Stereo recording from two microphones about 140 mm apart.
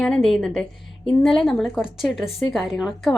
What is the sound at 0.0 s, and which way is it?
A woman's voice, 5° left (ahead or behind).